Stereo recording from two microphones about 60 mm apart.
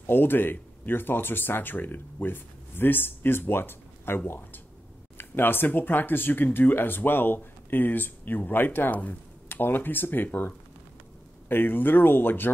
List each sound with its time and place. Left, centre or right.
0.0 s speech: left